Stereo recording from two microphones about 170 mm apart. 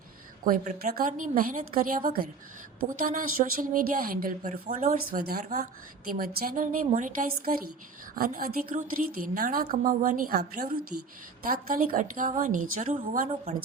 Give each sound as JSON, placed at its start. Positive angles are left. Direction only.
{"t": 0.4, "sound": "a woman's voice", "side_deg": -50}